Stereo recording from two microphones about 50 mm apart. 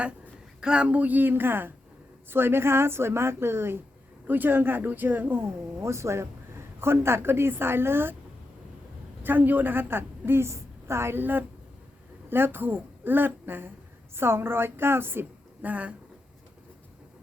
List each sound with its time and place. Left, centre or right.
0.6 s a woman's voice: right
4.3 s speech: right
5.8 s a woman's voice: right
9.2 s a woman's voice: right
15.6 s speech: right